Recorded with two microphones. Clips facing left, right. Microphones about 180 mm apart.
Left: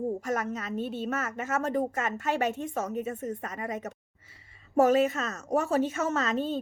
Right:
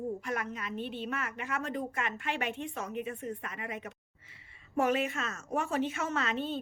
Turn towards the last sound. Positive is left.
turn(degrees=40)  # may be behind; listen again after turning